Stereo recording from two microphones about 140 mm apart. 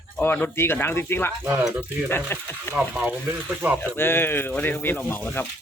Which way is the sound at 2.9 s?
10° right (ahead or behind).